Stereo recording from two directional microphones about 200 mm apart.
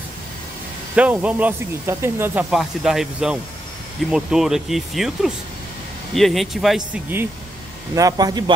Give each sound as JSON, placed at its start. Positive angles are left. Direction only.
{"t": 0.9, "sound": "a man's voice", "side_deg": -5}